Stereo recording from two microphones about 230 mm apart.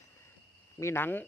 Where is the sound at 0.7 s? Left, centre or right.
Centre.